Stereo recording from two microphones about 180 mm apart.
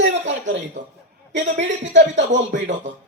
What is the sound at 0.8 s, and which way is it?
Speech, 40° right (ahead or behind).